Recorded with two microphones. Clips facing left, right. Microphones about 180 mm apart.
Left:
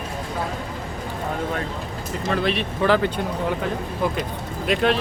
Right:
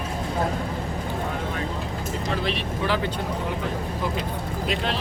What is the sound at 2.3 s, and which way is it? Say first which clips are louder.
Speech: left 6 dB; 60° left (ahead or behind).